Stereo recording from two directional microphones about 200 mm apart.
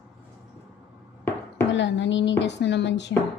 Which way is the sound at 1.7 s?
65° left (ahead or behind).